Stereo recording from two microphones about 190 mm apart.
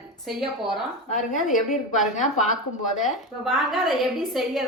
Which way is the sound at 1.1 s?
40° left (ahead or behind).